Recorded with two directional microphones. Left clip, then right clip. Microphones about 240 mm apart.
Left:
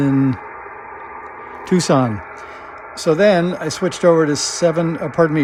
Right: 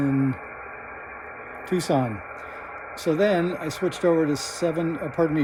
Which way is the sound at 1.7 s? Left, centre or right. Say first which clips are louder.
Left 8 dB; left.